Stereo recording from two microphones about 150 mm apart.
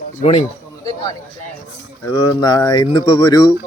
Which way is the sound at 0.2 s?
45° left (ahead or behind).